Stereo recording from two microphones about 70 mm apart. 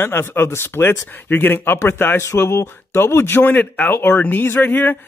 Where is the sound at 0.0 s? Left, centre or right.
Left.